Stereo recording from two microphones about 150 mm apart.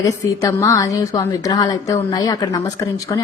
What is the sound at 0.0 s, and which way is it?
A woman's voice, 20° left (ahead or behind).